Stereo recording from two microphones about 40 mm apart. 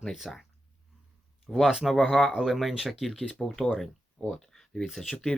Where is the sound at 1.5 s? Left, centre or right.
Centre.